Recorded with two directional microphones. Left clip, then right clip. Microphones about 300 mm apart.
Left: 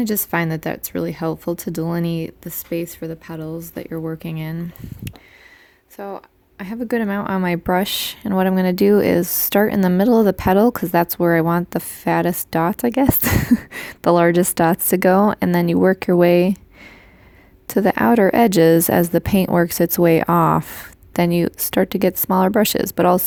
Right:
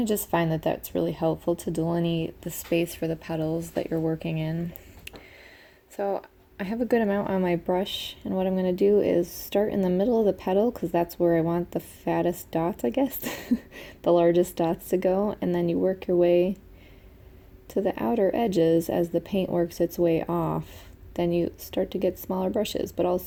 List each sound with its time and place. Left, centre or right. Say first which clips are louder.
0.0 s speech: left 4 dB; left
6.6 s speech: left 2 dB; left
7.4 s speech: left 6 dB; left
17.7 s speech: left 10 dB; left